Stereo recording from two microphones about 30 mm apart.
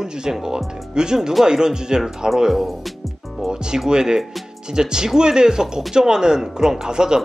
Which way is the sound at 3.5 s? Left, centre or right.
Right.